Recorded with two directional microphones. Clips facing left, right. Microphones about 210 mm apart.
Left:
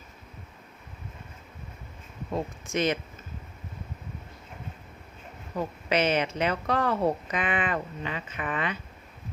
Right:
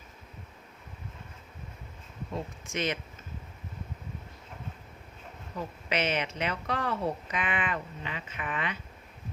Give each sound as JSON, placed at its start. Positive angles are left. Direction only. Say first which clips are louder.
{"t": 2.3, "sound": "speech", "louder": "left 6 dB", "side_deg": 40}
{"t": 5.5, "sound": "a woman's voice", "louder": "left 5 dB", "side_deg": 40}